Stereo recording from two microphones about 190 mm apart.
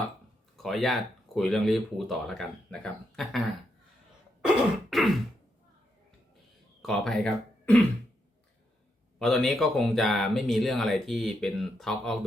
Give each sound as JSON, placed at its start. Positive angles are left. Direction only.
{"t": 0.5, "sound": "speech", "side_deg": 0}
{"t": 6.8, "sound": "speech", "side_deg": 0}
{"t": 9.1, "sound": "speech", "side_deg": 0}